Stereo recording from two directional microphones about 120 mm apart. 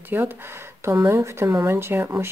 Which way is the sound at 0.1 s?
20° right (ahead or behind).